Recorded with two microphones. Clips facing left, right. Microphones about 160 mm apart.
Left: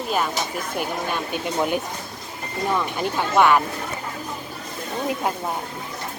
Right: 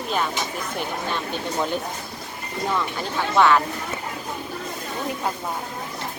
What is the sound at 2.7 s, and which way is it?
Speech, 15° left (ahead or behind).